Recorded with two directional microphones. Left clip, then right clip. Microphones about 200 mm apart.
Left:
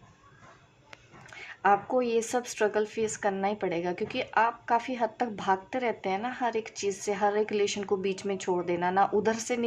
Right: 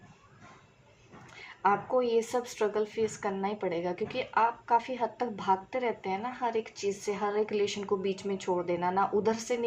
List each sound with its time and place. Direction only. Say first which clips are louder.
1.3 s speech: left 3 dB; 35° left (ahead or behind)